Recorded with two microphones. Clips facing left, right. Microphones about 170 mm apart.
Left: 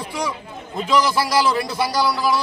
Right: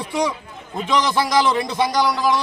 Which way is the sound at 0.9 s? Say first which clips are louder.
Left 1 dB; 5° left (ahead or behind).